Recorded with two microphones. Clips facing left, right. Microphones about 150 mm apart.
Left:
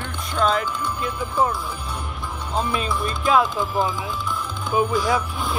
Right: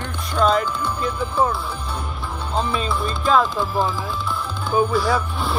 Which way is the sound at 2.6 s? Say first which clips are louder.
Right 1 dB; 5° left (ahead or behind).